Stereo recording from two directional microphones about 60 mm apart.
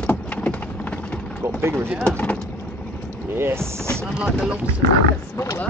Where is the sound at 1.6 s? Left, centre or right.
Right.